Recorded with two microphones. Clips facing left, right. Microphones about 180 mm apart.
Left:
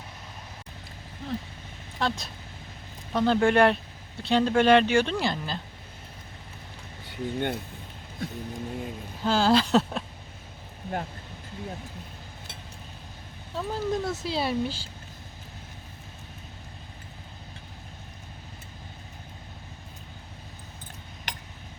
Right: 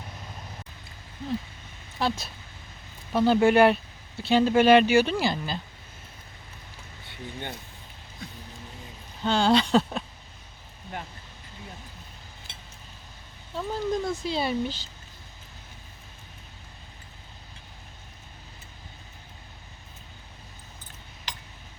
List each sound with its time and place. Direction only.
2.0 s speech: 5° right (ahead or behind)
7.1 s speech: 55° left (ahead or behind)
9.2 s speech: 5° left (ahead or behind)
13.6 s speech: 5° left (ahead or behind)